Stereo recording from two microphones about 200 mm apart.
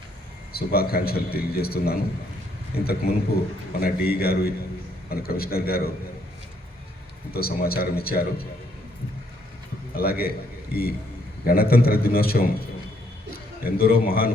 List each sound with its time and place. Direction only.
0.5 s a man's voice: 50° left (ahead or behind)
7.3 s a man's voice: 50° left (ahead or behind)
9.9 s a man's voice: 50° left (ahead or behind)